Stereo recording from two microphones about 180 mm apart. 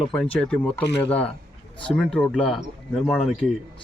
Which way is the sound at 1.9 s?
5° left (ahead or behind).